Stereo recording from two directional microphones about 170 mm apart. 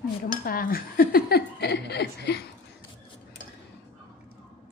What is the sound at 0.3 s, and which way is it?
Dishes, 55° left (ahead or behind).